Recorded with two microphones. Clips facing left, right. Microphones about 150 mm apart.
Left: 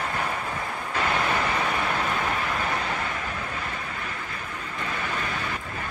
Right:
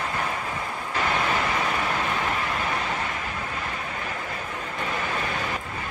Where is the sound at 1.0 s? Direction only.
Centre (ahead or behind).